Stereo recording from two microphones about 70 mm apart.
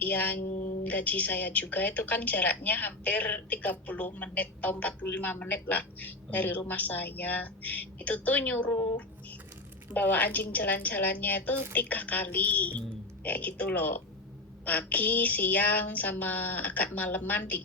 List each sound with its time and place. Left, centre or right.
0.0 s a woman's voice: left